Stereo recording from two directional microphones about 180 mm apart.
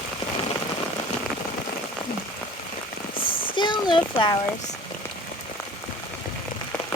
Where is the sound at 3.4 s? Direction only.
25° left (ahead or behind).